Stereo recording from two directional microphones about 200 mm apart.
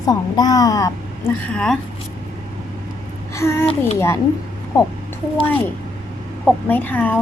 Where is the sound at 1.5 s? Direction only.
5° left (ahead or behind).